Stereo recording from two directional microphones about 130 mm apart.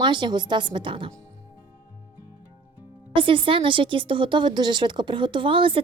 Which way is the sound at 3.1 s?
40° right (ahead or behind).